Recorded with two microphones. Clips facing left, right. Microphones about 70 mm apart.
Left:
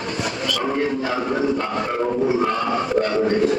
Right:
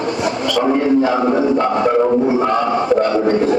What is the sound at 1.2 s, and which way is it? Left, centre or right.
Speech, right.